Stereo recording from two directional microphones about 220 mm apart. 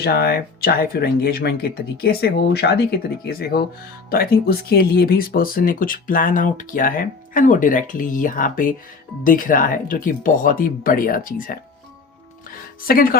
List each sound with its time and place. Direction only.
0.0 s speech: 45° left (ahead or behind)
12.9 s speech: 40° left (ahead or behind)